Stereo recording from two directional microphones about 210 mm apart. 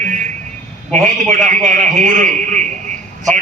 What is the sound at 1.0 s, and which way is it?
A man's voice, 40° right (ahead or behind).